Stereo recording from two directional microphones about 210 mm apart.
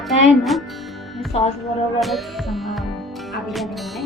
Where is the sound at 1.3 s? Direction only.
30° left (ahead or behind).